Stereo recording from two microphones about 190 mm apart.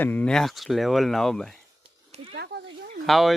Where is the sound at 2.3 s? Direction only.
65° right (ahead or behind).